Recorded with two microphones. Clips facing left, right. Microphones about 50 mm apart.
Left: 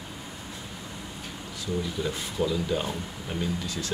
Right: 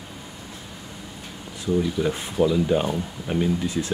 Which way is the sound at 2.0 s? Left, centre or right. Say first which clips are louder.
Right 7 dB; right.